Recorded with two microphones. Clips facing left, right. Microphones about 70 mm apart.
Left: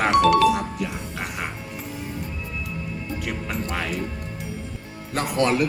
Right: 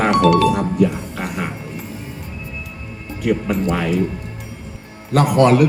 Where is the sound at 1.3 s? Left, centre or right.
Centre.